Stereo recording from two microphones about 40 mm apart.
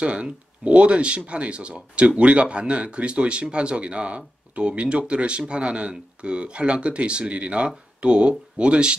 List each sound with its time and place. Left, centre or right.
0.0 s speech: right